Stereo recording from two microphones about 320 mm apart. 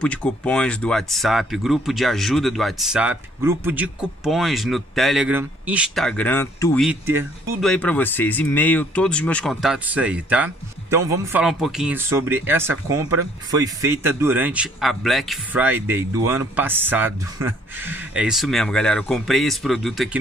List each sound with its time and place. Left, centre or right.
0.0 s speech: centre
7.7 s speech: centre